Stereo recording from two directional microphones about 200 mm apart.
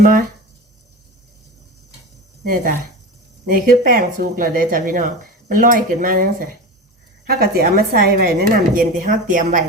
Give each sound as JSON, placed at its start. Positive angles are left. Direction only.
{"t": 0.0, "sound": "speech", "side_deg": -45}
{"t": 2.4, "sound": "speech", "side_deg": -45}